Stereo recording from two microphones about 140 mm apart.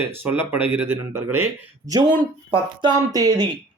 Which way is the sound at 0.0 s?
15° right (ahead or behind).